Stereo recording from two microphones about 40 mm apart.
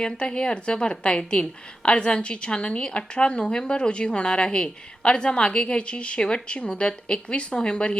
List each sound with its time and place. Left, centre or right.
0.0 s a woman's voice: left